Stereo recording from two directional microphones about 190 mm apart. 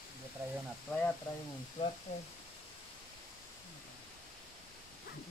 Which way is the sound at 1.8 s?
35° left (ahead or behind).